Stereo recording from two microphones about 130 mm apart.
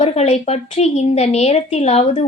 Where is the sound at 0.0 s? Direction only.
50° left (ahead or behind).